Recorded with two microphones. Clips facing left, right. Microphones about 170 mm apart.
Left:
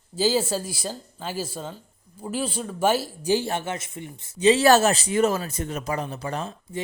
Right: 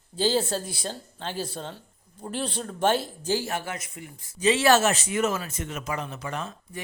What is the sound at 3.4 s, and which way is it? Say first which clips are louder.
Speech: left 3 dB; 25° left (ahead or behind).